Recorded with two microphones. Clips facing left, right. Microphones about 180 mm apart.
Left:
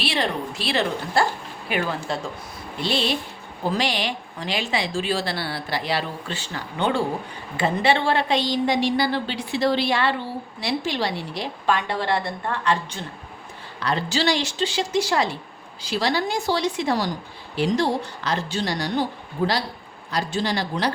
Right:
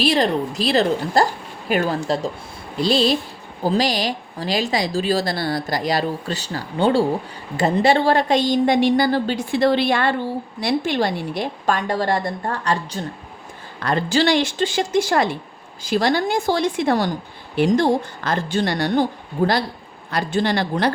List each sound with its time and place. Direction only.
0.0 s a woman's voice: 40° right (ahead or behind)
13.7 s a woman's voice: 50° right (ahead or behind)